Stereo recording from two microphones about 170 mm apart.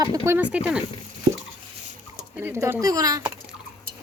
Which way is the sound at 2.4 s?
15° right (ahead or behind).